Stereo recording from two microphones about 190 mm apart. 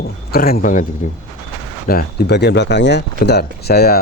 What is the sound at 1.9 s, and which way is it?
Speech, 55° left (ahead or behind).